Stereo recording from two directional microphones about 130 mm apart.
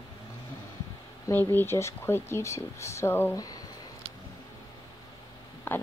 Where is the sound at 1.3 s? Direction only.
15° left (ahead or behind).